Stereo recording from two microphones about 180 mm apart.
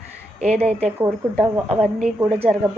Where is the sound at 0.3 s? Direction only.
35° right (ahead or behind).